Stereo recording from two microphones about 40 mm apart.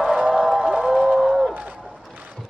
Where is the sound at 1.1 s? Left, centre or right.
Centre.